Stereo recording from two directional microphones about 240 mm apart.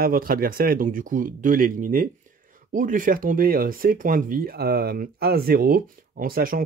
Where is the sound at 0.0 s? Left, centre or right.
Right.